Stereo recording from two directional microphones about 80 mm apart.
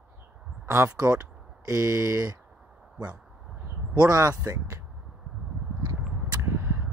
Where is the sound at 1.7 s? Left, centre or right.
Right.